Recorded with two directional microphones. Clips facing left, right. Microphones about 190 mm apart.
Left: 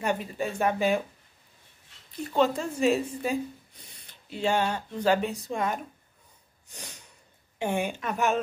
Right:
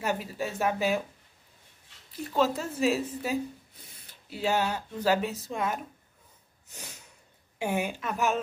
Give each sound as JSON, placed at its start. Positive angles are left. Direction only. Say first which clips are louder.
{"t": 0.0, "sound": "speech", "louder": "left 2 dB", "side_deg": -5}
{"t": 2.2, "sound": "speech", "louder": "left 2 dB", "side_deg": -5}
{"t": 6.7, "sound": "snort", "louder": "left 1 dB", "side_deg": -10}
{"t": 7.5, "sound": "speech", "louder": "left 1 dB", "side_deg": -10}